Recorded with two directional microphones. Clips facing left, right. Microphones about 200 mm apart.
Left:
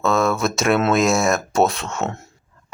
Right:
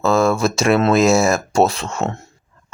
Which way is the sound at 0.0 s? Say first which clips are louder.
Right 3 dB; centre (ahead or behind).